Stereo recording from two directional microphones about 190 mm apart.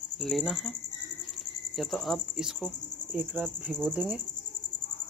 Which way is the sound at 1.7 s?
Centre (ahead or behind).